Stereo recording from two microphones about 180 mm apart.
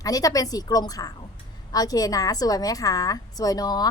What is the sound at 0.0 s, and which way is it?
A woman's voice, 20° left (ahead or behind).